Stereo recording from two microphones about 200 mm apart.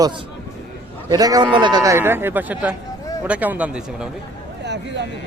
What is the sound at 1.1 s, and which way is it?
Speech, 20° right (ahead or behind).